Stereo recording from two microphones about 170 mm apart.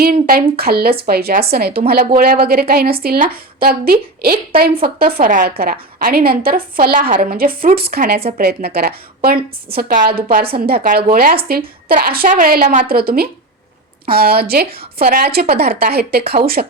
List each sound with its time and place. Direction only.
0.0 s a woman's voice: 60° right (ahead or behind)
9.7 s a woman's voice: 60° right (ahead or behind)